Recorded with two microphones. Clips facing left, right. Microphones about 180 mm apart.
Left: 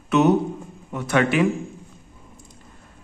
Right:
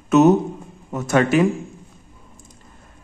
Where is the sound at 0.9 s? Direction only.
40° right (ahead or behind).